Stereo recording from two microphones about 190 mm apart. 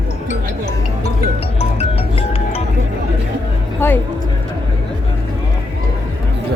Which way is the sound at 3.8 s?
10° left (ahead or behind).